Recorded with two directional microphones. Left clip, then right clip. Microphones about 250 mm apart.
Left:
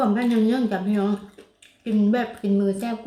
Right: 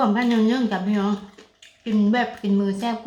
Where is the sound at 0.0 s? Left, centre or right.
Centre.